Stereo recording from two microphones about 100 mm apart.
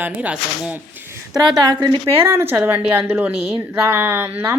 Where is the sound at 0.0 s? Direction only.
15° right (ahead or behind).